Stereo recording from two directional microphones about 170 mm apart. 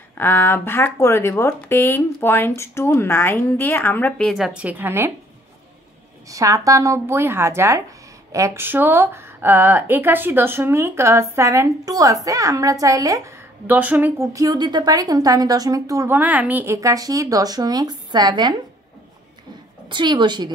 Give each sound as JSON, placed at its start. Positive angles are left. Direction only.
{"t": 0.2, "sound": "speech", "side_deg": 15}
{"t": 4.6, "sound": "speech", "side_deg": -10}
{"t": 6.2, "sound": "a woman's voice", "side_deg": -20}
{"t": 13.7, "sound": "a woman's voice", "side_deg": -10}
{"t": 19.9, "sound": "a woman's voice", "side_deg": -25}